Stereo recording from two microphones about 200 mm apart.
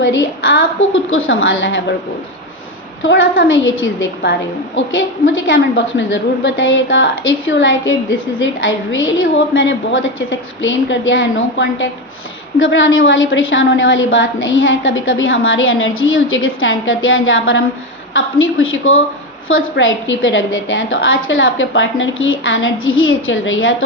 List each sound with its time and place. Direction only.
0.0 s a woman's voice: 65° left (ahead or behind)
3.0 s a woman's voice: 70° left (ahead or behind)
18.6 s speech: 90° left
19.5 s a woman's voice: 80° left